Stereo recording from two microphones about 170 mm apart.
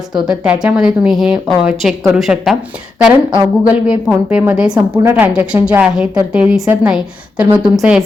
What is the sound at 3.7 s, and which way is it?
A woman's voice, 5° right (ahead or behind).